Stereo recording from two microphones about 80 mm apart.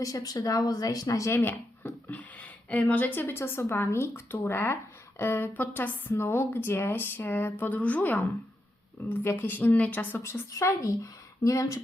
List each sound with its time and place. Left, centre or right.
0.0 s speech: left
1.3 s speech: left
10.2 s a woman's voice: left